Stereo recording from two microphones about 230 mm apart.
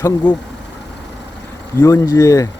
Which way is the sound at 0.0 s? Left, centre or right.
Centre.